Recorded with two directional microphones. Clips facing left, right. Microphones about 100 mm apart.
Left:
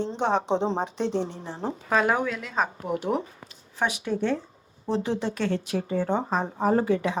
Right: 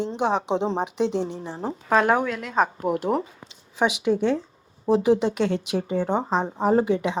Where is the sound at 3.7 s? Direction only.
15° right (ahead or behind).